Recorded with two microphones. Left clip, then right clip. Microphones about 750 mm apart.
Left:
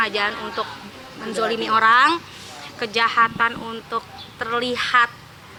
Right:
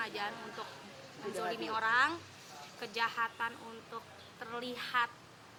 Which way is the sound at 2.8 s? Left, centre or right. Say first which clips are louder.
Left 17 dB; left.